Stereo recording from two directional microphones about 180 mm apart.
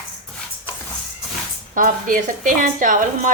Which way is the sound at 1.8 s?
50° right (ahead or behind).